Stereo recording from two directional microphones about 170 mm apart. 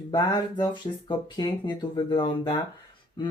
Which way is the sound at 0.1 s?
25° left (ahead or behind).